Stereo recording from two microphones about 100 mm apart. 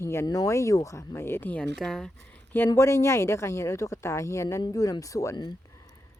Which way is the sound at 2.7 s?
30° left (ahead or behind).